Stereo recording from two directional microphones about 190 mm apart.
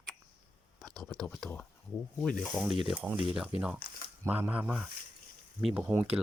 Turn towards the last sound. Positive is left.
turn(degrees=-10)  # may be behind; listen again after turning